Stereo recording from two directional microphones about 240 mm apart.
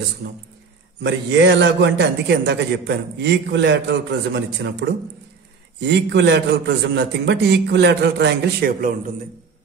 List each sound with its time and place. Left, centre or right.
1.0 s a man's voice: right